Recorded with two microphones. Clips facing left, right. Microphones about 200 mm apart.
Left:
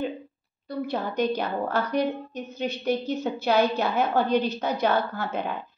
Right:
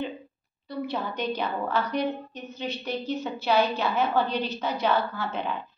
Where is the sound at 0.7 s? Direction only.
45° left (ahead or behind).